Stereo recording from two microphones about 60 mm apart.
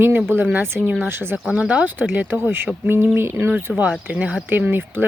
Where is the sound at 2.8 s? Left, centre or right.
Right.